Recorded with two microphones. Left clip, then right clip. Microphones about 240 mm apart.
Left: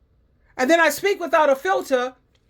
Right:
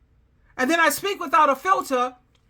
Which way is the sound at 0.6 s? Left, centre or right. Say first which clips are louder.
Left 3 dB; centre.